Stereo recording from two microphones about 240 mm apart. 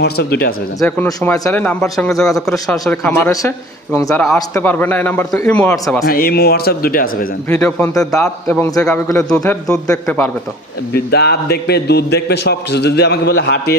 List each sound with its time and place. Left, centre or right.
0.0 s speech: left
0.7 s a man's voice: centre
6.0 s speech: left
7.4 s a man's voice: centre
10.9 s a man's voice: left